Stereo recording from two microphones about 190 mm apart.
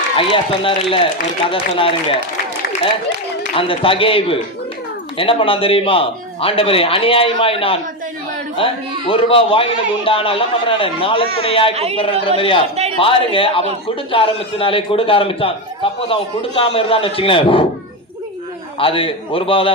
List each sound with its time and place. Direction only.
0.2 s a man's voice: 30° left (ahead or behind)
3.5 s a man's voice: 30° left (ahead or behind)
11.7 s a woman's voice: 35° right (ahead or behind)
12.4 s a man's voice: 30° left (ahead or behind)
12.7 s a man's voice: 35° right (ahead or behind)
13.0 s a man's voice: 30° left (ahead or behind)
18.8 s a man's voice: 30° left (ahead or behind)